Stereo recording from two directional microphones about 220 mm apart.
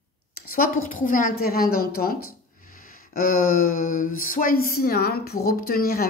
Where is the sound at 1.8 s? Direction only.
45° left (ahead or behind).